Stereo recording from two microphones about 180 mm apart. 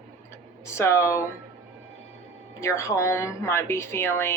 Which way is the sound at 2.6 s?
15° left (ahead or behind).